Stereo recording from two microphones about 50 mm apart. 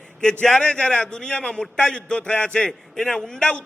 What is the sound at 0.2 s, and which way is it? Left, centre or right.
A man's voice, centre.